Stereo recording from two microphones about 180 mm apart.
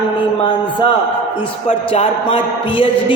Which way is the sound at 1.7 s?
30° left (ahead or behind).